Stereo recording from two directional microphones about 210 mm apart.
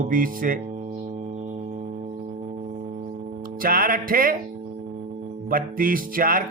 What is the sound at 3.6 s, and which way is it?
Speech, 45° right (ahead or behind).